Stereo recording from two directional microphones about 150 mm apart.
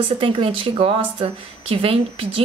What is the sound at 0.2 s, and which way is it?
Speech, 35° right (ahead or behind).